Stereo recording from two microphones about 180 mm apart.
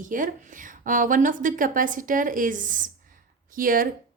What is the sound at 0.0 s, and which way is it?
Speech, 45° right (ahead or behind).